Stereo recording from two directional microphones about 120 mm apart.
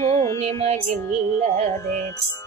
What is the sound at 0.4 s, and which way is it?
Music, 65° right (ahead or behind).